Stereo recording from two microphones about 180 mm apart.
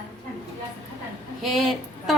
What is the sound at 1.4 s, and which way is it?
Speech, centre (ahead or behind).